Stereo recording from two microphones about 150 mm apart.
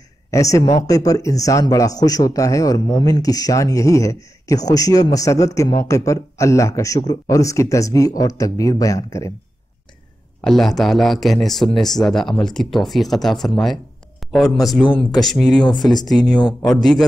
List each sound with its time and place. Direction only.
0.3 s speech: 20° left (ahead or behind)
10.4 s speech: centre (ahead or behind)
15.6 s speech: 30° left (ahead or behind)
16.1 s speech: centre (ahead or behind)